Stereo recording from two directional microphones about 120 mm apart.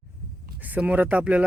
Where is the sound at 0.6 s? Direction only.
15° right (ahead or behind).